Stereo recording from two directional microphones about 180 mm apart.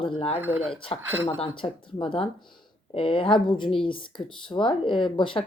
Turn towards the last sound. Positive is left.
turn(degrees=30)  # may be behind; listen again after turning